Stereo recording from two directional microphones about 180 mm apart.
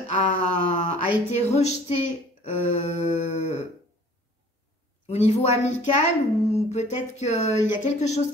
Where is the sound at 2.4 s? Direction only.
40° left (ahead or behind).